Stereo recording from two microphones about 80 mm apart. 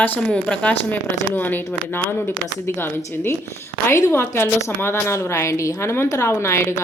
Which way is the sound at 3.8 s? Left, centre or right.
Left.